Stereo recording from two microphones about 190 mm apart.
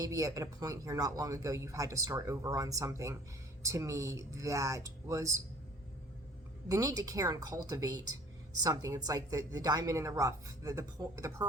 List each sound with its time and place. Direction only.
0.0 s speech: 15° right (ahead or behind)
6.7 s a woman's voice: 20° right (ahead or behind)